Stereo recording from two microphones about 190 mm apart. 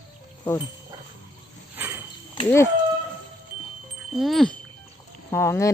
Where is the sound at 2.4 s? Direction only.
15° left (ahead or behind).